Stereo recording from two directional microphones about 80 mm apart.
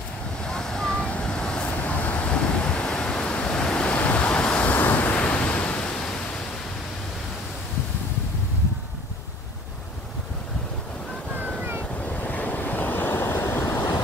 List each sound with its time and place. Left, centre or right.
0.4 s vehicle: centre
12.0 s waves: centre